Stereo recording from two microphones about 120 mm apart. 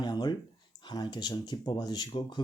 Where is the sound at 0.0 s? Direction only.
35° left (ahead or behind).